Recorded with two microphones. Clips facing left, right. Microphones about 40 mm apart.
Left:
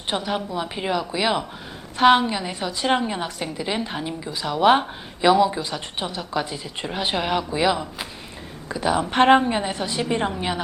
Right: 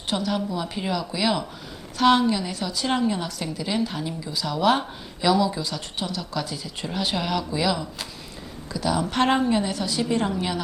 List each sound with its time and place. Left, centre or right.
0.1 s a woman's voice: left